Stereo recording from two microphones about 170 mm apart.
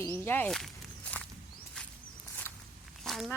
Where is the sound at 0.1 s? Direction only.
10° left (ahead or behind).